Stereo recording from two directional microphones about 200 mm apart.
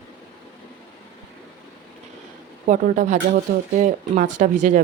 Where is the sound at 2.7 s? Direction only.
40° right (ahead or behind).